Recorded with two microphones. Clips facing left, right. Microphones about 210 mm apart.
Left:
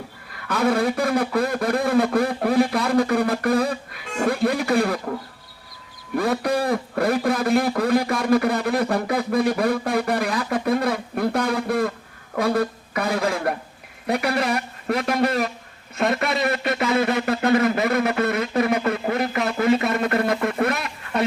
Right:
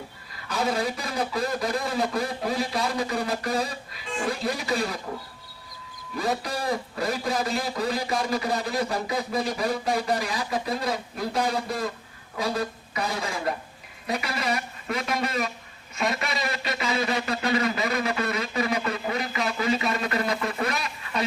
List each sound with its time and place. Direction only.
0.4 s speech: 60° left (ahead or behind)
6.1 s a man's voice: 60° left (ahead or behind)